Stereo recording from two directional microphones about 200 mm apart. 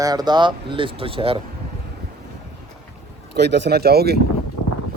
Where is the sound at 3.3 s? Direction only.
60° right (ahead or behind).